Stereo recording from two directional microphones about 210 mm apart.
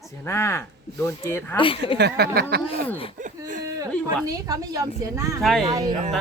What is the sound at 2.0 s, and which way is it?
Speech, 50° right (ahead or behind).